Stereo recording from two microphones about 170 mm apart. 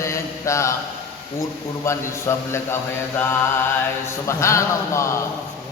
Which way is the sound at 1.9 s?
15° left (ahead or behind).